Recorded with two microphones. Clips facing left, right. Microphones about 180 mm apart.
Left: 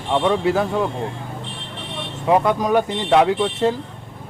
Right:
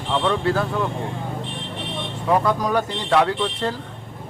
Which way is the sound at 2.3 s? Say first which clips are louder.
Left 3 dB; 20° left (ahead or behind).